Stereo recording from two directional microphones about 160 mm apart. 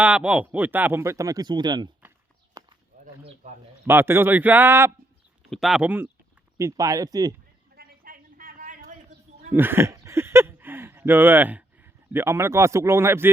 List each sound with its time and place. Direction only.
0.0 s speech: 10° right (ahead or behind); by 1.9 s 25° right (ahead or behind)
2.6 s a sound: 25° right (ahead or behind)
3.4 s speech: 45° right (ahead or behind)
3.8 s speech: 15° right (ahead or behind)
5.4 s speech: centre (ahead or behind); by 7.3 s 25° right (ahead or behind)
7.8 s a sound: 60° right (ahead or behind)
9.6 s speech: 15° right (ahead or behind)